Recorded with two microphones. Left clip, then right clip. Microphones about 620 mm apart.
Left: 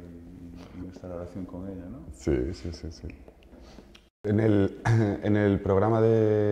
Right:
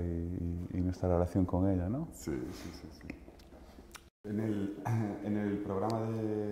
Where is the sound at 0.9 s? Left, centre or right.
Right.